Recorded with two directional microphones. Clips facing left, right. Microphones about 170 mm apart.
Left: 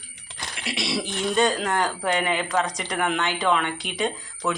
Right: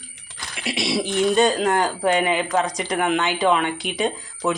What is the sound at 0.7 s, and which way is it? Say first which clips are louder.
Speech: right 6 dB; 20° right (ahead or behind).